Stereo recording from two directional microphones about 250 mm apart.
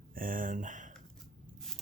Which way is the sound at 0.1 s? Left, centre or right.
Right.